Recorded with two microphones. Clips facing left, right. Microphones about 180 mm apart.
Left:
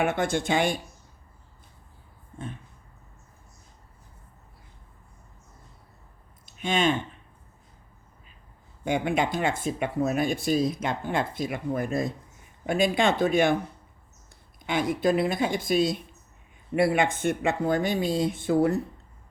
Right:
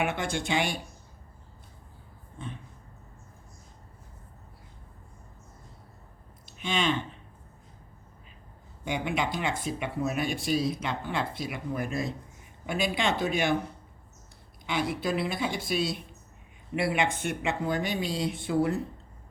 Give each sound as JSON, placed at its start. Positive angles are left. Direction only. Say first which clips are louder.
{"t": 0.0, "sound": "speech", "louder": "left 5 dB", "side_deg": 50}
{"t": 6.6, "sound": "speech", "louder": "left 4 dB", "side_deg": 50}
{"t": 8.8, "sound": "speech", "louder": "left 5 dB", "side_deg": 50}
{"t": 14.7, "sound": "speech", "louder": "left 5 dB", "side_deg": 50}